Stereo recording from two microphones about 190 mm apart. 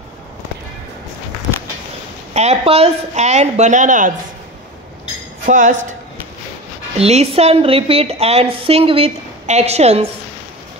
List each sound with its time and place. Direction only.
2.3 s a woman's voice: 35° right (ahead or behind)
5.4 s speech: 45° right (ahead or behind)
7.0 s a woman's voice: 35° right (ahead or behind)